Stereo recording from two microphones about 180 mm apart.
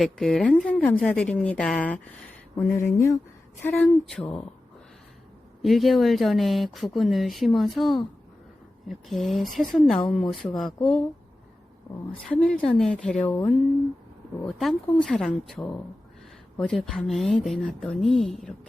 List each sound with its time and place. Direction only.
0.0 s speech: centre (ahead or behind)
5.6 s speech: centre (ahead or behind)
12.1 s speech: 5° left (ahead or behind)